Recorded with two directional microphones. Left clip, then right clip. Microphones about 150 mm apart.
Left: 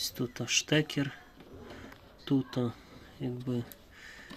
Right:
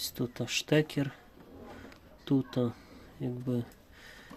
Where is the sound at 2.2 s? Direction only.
10° right (ahead or behind).